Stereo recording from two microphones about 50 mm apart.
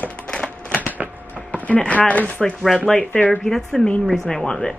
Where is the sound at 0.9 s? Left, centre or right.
Right.